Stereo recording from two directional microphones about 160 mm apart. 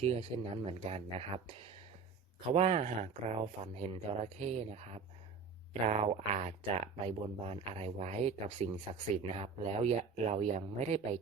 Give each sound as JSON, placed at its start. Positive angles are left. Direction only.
{"t": 0.0, "sound": "speech", "side_deg": -35}
{"t": 2.5, "sound": "speech", "side_deg": -40}
{"t": 5.9, "sound": "speech", "side_deg": -40}